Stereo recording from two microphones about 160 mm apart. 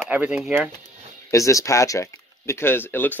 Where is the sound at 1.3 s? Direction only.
20° left (ahead or behind).